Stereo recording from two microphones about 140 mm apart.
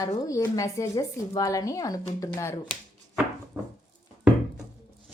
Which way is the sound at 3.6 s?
20° right (ahead or behind).